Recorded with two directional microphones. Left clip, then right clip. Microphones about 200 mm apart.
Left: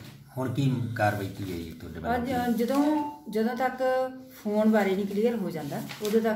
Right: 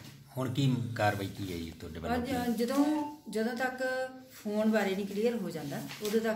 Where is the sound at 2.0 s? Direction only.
5° left (ahead or behind).